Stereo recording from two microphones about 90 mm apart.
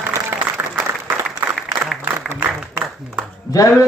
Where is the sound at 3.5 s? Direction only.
40° left (ahead or behind).